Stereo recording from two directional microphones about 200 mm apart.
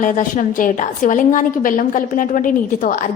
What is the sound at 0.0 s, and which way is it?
A woman's voice, 40° left (ahead or behind).